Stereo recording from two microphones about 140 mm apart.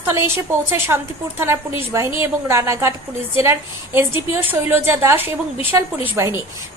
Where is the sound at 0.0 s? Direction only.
15° right (ahead or behind).